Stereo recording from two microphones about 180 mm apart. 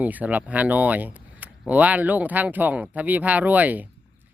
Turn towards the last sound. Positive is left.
turn(degrees=-10)  # may be behind; listen again after turning